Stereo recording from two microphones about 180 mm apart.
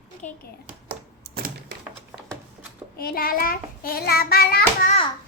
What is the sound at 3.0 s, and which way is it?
Child singing, 55° left (ahead or behind).